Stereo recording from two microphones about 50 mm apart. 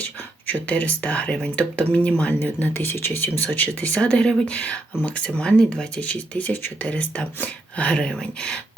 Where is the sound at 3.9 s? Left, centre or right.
Left.